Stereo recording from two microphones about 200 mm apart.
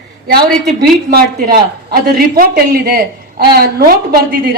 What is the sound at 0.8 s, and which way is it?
Speech, 50° right (ahead or behind).